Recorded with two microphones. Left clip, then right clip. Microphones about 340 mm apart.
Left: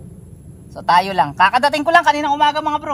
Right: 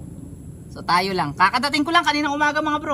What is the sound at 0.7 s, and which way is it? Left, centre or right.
Speech, centre.